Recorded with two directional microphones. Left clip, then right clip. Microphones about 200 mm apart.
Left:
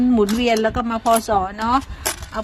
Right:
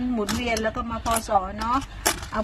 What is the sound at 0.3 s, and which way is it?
A woman's voice, 50° left (ahead or behind).